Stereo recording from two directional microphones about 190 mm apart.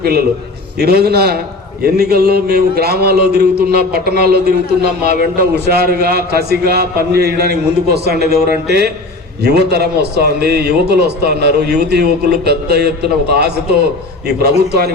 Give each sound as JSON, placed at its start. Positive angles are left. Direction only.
{"t": 0.0, "sound": "a man's voice", "side_deg": -55}